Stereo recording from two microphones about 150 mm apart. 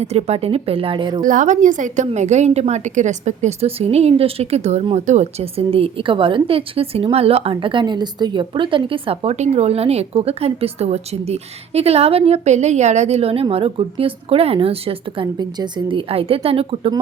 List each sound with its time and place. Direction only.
0.0 s a woman's voice: 45° right (ahead or behind)
1.2 s a woman's voice: 60° right (ahead or behind); by 16.9 s 40° right (ahead or behind)